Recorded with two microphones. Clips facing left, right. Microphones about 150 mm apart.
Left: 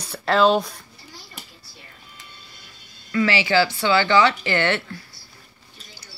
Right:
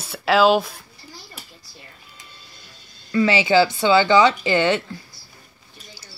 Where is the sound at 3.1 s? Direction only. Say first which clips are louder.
Right 3 dB; 25° right (ahead or behind).